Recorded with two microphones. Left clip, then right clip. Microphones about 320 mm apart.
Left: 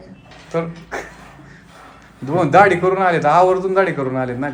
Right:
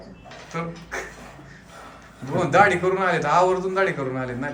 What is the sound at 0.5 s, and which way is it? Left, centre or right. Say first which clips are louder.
Speech: left 7 dB; centre.